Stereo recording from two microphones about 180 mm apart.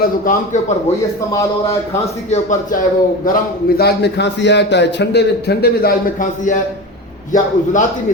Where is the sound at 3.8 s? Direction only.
65° left (ahead or behind); by 7.9 s 45° left (ahead or behind).